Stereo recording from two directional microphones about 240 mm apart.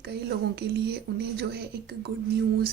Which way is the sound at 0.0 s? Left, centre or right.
Right.